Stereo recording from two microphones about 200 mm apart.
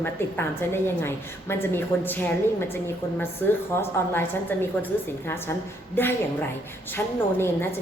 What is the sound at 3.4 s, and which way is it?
A woman's voice, 10° left (ahead or behind).